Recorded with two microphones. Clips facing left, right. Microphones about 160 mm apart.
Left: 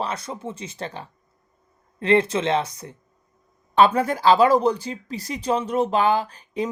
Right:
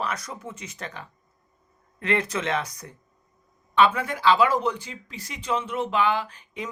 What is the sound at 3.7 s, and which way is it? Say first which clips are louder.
Speech: left 4 dB; 40° left (ahead or behind).